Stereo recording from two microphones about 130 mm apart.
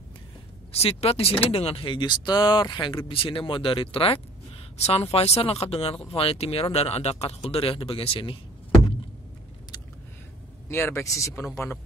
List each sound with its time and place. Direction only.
0.7 s speech: 50° left (ahead or behind)
10.7 s speech: 20° left (ahead or behind)